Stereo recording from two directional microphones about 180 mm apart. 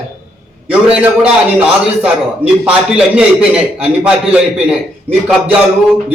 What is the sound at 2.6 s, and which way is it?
A man's voice, 5° right (ahead or behind).